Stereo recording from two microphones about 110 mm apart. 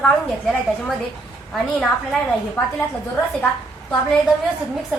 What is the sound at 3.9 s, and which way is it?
Speech, 5° left (ahead or behind).